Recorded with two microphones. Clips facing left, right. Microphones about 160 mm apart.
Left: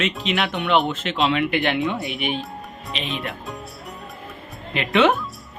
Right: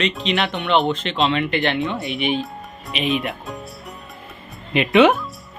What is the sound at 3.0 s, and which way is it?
Speech, 20° right (ahead or behind).